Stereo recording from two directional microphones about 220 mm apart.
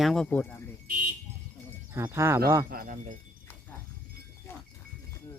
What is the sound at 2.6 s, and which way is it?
Speech, 40° right (ahead or behind).